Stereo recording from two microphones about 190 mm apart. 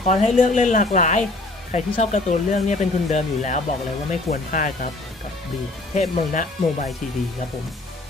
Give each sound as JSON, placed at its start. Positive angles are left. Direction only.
{"t": 0.0, "sound": "speech", "side_deg": 35}
{"t": 5.9, "sound": "speech", "side_deg": 40}